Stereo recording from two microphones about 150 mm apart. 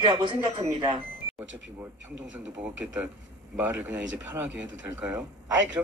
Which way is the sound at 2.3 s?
10° right (ahead or behind).